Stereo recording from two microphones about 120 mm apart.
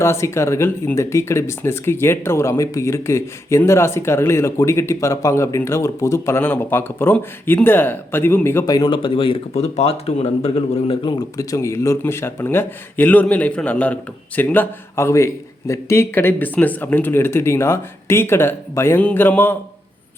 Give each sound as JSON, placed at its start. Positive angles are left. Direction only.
{"t": 0.0, "sound": "speech", "side_deg": 20}
{"t": 8.6, "sound": "speech", "side_deg": 35}
{"t": 11.0, "sound": "speech", "side_deg": 40}
{"t": 11.5, "sound": "speech", "side_deg": 25}